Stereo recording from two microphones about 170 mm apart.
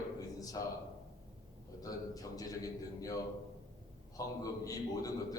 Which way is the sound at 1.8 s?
20° left (ahead or behind).